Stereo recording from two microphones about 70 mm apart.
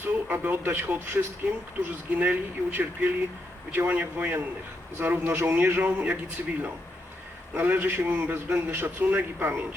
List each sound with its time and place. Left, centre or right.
0.0 s a man's voice: right